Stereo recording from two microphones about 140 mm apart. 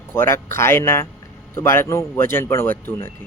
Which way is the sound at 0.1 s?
20° left (ahead or behind).